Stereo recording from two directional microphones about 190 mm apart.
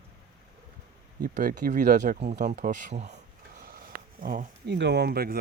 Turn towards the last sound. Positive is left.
turn(degrees=-55)  # may be behind; listen again after turning